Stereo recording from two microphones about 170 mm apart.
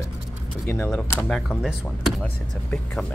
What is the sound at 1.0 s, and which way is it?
Speech, 5° left (ahead or behind).